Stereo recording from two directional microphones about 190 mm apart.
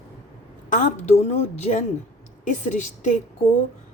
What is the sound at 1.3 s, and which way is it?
A woman's voice, 35° left (ahead or behind).